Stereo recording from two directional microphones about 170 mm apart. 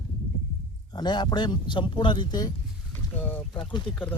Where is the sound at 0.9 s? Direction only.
25° left (ahead or behind).